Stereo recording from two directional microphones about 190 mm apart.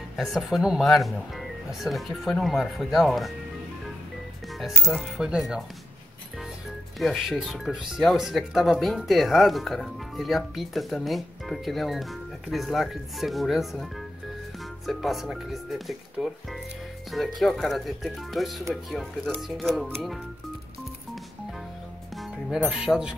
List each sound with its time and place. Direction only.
0.1 s speech: centre (ahead or behind)
4.9 s speech: centre (ahead or behind)
7.0 s speech: centre (ahead or behind)
22.1 s speech: centre (ahead or behind)